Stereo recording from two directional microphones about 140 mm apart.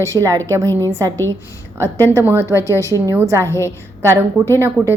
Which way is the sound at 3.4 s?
20° left (ahead or behind).